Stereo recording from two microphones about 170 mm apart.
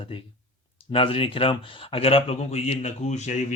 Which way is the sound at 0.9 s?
30° left (ahead or behind).